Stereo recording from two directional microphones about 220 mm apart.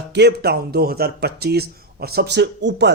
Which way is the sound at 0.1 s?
50° right (ahead or behind).